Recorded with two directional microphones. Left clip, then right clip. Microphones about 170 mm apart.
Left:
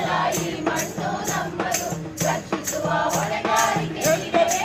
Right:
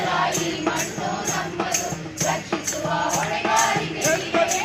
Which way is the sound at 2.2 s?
20° left (ahead or behind).